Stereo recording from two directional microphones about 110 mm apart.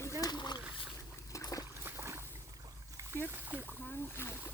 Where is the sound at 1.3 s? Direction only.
30° left (ahead or behind).